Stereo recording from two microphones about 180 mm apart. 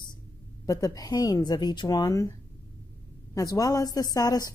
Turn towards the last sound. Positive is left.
turn(degrees=20)  # may be behind; listen again after turning